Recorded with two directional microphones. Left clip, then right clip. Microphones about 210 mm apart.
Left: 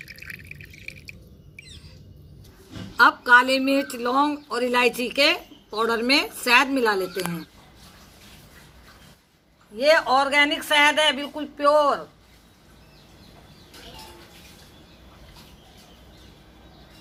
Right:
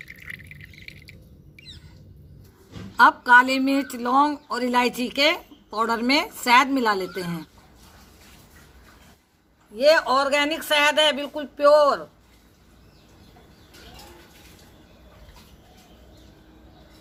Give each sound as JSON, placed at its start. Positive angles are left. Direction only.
{"t": 3.0, "sound": "a woman's voice", "side_deg": -50}
{"t": 9.7, "sound": "speech", "side_deg": -40}